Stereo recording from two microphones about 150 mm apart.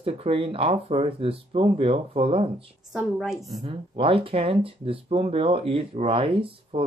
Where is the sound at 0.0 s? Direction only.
40° right (ahead or behind).